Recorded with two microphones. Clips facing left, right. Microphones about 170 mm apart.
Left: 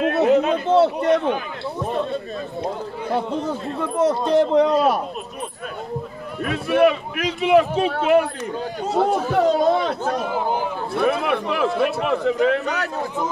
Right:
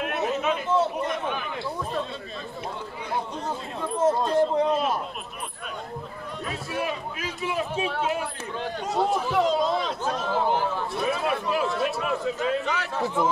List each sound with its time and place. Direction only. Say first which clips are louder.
0.0 s a sound: left 11 dB; 70° left (ahead or behind)
0.7 s a man's voice: left 10 dB; 75° left (ahead or behind)
3.1 s a man's voice: left 7 dB; 70° left (ahead or behind)
6.4 s a man's voice: left 14 dB; 70° left (ahead or behind)
9.2 s speech: left 5 dB; 55° left (ahead or behind)
10.1 s speech: left 2 dB; 15° left (ahead or behind)
11.0 s a man's voice: left 8 dB; 65° left (ahead or behind)